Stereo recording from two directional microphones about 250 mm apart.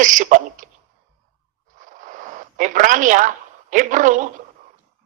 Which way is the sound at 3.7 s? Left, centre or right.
Right.